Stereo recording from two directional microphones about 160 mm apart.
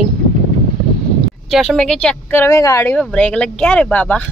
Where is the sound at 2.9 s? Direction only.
5° left (ahead or behind).